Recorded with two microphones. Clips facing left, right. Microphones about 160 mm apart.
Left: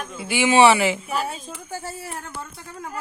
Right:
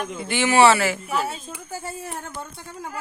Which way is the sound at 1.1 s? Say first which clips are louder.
Right 1 dB; centre (ahead or behind).